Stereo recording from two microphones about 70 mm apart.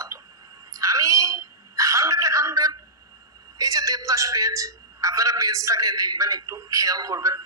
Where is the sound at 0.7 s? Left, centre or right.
Right.